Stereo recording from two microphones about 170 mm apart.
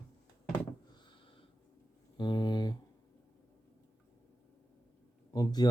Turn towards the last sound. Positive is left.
turn(degrees=25)  # may be behind; listen again after turning